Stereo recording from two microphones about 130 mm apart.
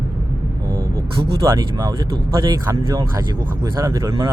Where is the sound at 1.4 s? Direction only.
25° right (ahead or behind).